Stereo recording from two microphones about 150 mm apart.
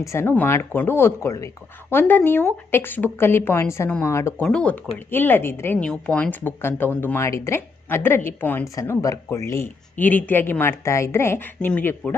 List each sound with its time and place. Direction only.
0.0 s speech: 15° left (ahead or behind)